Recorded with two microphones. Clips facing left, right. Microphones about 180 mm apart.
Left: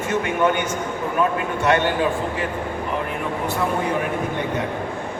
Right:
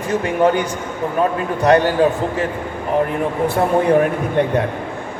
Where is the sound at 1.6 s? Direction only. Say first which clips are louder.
Right 6 dB; 35° right (ahead or behind).